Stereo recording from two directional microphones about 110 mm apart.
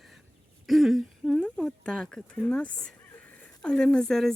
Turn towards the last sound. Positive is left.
turn(degrees=5)  # may be behind; listen again after turning